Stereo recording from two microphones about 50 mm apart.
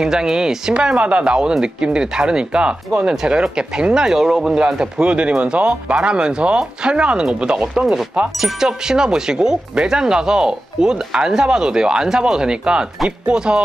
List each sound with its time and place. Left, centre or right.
0.0 s speech: centre
7.8 s speech: centre